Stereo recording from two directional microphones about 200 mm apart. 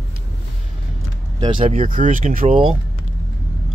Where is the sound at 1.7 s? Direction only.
40° right (ahead or behind).